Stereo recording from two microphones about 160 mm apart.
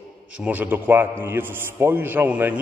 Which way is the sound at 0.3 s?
10° right (ahead or behind).